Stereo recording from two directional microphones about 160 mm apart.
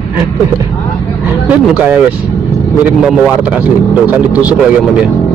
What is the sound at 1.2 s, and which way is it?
Speech, 10° right (ahead or behind).